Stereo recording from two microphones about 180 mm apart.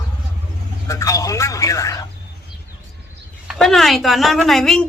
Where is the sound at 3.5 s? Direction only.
Centre (ahead or behind).